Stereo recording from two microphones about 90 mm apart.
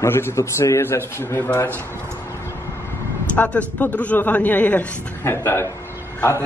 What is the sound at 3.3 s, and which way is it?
A man's voice, 15° left (ahead or behind).